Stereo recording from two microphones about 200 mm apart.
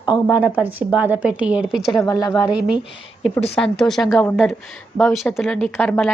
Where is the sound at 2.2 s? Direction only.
20° left (ahead or behind).